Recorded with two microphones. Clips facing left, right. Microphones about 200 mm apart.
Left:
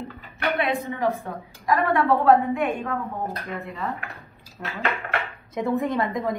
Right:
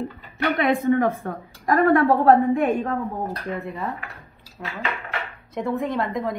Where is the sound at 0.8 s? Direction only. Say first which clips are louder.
Right 6 dB; 55° right (ahead or behind); by 2.9 s 40° right (ahead or behind).